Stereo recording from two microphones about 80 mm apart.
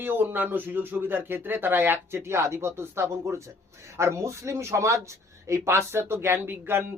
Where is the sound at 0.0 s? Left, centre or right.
Right.